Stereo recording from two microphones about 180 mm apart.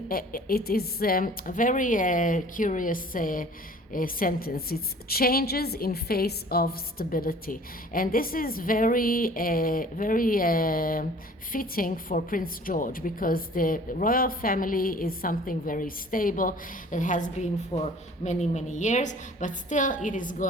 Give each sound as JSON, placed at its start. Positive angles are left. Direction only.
{"t": 0.1, "sound": "a woman's voice", "side_deg": 55}